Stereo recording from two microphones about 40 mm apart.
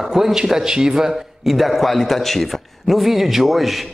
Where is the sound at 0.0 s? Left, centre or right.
Centre.